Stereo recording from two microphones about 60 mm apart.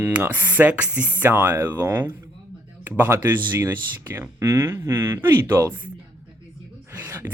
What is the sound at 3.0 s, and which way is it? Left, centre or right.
Speech, right.